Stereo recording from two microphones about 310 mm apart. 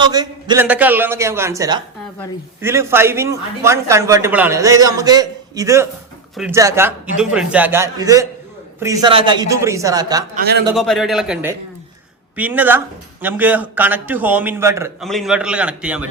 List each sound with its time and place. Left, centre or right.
0.0 s speech: centre
10.3 s a man's voice: right
10.8 s a man's voice: centre